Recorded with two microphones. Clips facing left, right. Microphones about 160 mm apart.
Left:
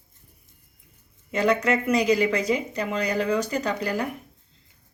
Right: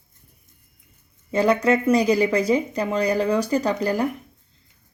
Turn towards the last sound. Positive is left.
turn(degrees=-35)  # may be behind; listen again after turning